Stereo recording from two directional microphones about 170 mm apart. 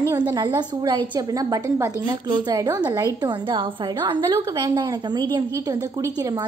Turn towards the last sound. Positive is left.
turn(degrees=-20)  # may be behind; listen again after turning